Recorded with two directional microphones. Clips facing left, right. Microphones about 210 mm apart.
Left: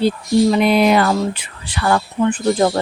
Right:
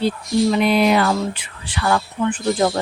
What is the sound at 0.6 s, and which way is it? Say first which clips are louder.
Speech: left 2 dB; 50° left (ahead or behind).